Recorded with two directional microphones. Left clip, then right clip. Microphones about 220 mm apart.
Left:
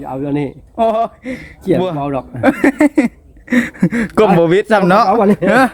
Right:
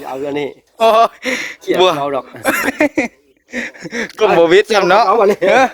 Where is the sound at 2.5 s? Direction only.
25° right (ahead or behind).